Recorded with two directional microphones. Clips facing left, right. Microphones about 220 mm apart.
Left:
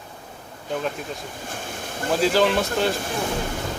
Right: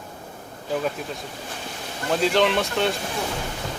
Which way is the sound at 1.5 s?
50° left (ahead or behind).